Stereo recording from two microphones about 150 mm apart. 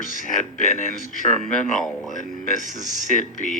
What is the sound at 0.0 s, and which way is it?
Speech, 60° left (ahead or behind).